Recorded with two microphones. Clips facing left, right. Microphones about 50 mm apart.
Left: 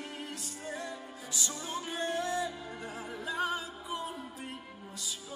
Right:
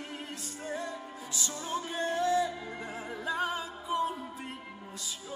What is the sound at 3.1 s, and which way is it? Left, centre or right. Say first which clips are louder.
Music: right 1 dB; right.